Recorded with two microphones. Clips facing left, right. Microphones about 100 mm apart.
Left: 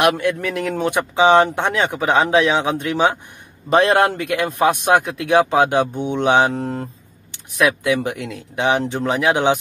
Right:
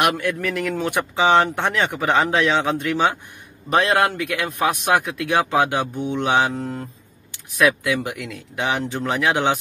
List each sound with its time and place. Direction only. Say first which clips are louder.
0.2 s speech: left 3 dB; 20° left (ahead or behind)
8.0 s speech: left 4 dB; 30° left (ahead or behind)